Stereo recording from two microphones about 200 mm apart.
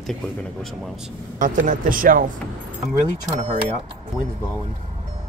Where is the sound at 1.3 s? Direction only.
40° right (ahead or behind).